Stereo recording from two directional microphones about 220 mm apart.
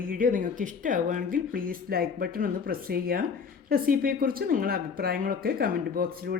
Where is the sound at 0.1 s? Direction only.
35° right (ahead or behind).